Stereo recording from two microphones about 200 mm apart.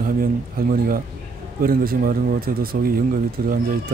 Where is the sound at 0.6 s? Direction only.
50° right (ahead or behind).